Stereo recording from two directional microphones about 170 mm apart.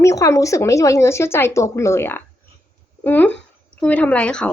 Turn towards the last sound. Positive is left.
turn(degrees=5)  # may be behind; listen again after turning